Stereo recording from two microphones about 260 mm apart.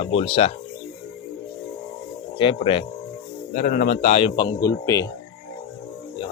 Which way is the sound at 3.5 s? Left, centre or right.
Left.